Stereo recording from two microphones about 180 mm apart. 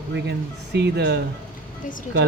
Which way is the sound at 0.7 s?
70° right (ahead or behind).